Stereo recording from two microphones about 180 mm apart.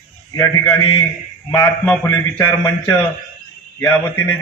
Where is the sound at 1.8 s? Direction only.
10° left (ahead or behind).